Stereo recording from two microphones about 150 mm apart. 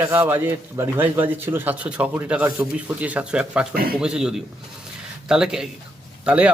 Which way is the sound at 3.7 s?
80° right.